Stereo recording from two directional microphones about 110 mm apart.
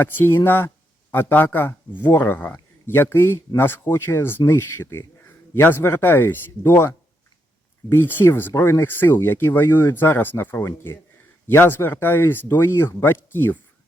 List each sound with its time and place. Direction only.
0.0 s speech: 20° left (ahead or behind)